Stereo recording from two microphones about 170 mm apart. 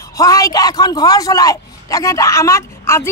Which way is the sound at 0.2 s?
20° left (ahead or behind).